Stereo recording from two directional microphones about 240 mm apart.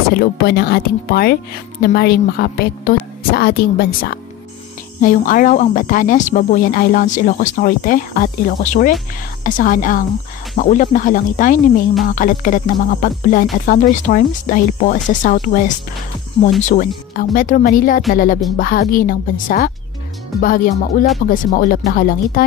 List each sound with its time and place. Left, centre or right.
0.1 s speech: left